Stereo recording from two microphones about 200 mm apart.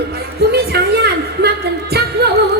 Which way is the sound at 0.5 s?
55° right (ahead or behind).